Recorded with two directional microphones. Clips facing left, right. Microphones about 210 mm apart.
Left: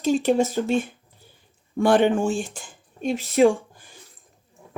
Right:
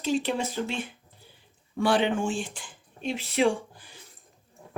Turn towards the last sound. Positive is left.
turn(degrees=45)  # may be behind; listen again after turning